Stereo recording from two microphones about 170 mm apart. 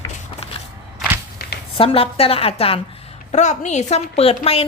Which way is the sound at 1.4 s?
65° left (ahead or behind).